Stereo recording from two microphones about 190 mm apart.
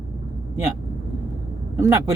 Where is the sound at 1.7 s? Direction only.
15° right (ahead or behind).